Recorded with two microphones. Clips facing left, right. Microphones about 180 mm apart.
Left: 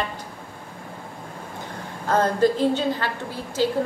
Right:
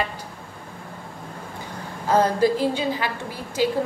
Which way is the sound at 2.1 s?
10° right (ahead or behind).